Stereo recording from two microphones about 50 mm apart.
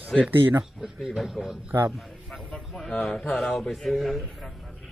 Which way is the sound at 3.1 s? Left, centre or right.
Centre.